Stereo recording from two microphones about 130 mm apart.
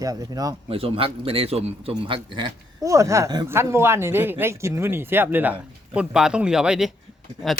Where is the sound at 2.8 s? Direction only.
25° right (ahead or behind); by 6.9 s 5° right (ahead or behind).